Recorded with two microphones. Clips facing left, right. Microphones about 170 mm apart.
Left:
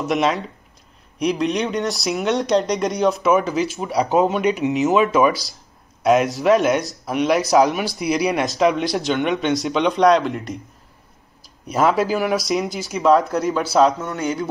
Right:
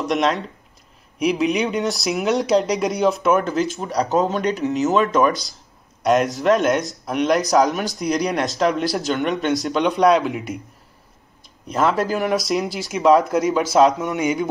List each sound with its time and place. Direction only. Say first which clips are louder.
0.0 s speech: even; centre (ahead or behind)
4.0 s speech: left 2 dB; 15° left (ahead or behind)
4.9 s speech: left 1 dB; 5° left (ahead or behind)
13.9 s speech: right 3 dB; 15° right (ahead or behind)